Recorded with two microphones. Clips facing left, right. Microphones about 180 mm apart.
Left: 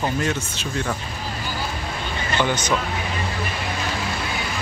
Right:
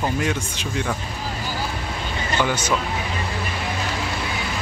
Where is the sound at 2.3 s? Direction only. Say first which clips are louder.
Even; 10° right (ahead or behind).